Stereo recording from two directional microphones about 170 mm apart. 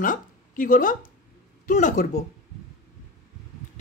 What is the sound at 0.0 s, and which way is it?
A woman's voice, 50° left (ahead or behind).